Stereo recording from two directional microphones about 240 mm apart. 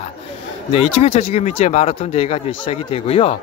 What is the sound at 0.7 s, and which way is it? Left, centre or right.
Speech, left.